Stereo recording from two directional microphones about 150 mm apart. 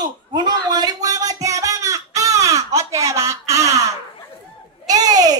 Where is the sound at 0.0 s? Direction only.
25° right (ahead or behind).